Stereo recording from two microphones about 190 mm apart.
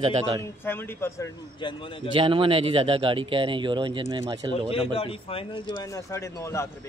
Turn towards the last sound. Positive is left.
turn(degrees=15)  # may be behind; listen again after turning